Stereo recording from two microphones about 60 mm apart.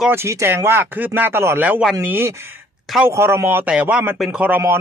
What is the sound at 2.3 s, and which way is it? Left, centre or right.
Speech, right.